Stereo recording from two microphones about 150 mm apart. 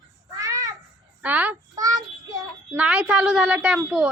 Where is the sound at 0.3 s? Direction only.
20° right (ahead or behind).